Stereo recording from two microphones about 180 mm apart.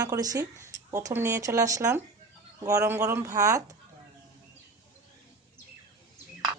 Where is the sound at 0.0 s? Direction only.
20° right (ahead or behind).